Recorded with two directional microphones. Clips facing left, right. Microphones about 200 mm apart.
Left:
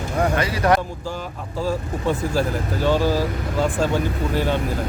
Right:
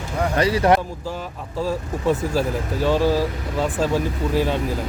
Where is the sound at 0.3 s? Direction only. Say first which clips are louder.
Right 5 dB; 35° right (ahead or behind).